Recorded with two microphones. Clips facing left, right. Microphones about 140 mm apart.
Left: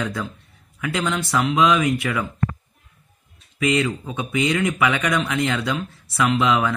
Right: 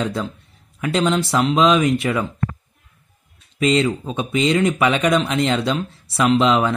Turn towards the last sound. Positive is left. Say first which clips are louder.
# right 3 dB
turn(degrees=-25)  # may be behind; listen again after turning